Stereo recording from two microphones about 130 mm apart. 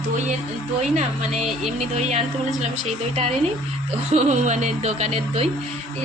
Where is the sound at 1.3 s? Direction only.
Centre (ahead or behind).